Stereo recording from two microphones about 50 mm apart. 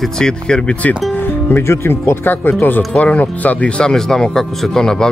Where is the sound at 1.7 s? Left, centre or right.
Left.